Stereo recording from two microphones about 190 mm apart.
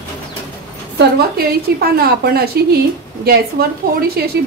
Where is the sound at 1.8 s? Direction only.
55° right (ahead or behind).